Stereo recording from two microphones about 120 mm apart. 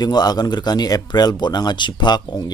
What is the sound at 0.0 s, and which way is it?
A man's voice, 35° left (ahead or behind).